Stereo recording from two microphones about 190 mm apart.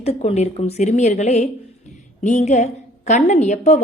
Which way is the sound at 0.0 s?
35° left (ahead or behind).